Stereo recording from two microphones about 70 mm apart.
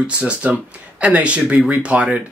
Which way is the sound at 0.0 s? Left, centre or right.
Centre.